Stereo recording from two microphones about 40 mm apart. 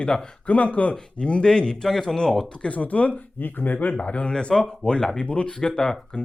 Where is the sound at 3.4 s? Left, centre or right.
Left.